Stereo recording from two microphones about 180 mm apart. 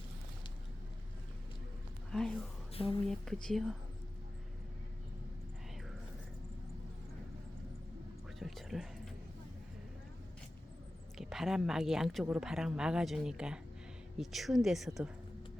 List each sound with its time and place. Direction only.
2.0 s speech: 5° left (ahead or behind)
2.7 s speech: 30° left (ahead or behind)
3.1 s speech: 5° left (ahead or behind)
8.4 s a sound: centre (ahead or behind)
11.2 s speech: centre (ahead or behind)